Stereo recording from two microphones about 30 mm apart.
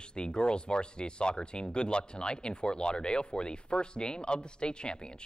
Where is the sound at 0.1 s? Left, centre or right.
Left.